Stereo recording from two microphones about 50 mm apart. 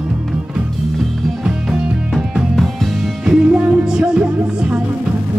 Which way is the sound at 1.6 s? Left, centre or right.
Centre.